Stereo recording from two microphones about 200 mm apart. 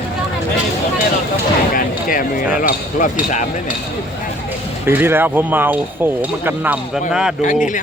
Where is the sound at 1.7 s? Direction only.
45° left (ahead or behind).